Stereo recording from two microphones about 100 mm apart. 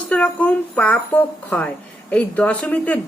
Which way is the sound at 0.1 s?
15° left (ahead or behind).